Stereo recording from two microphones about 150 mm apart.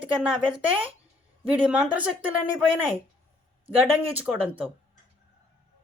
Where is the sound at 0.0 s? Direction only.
10° right (ahead or behind).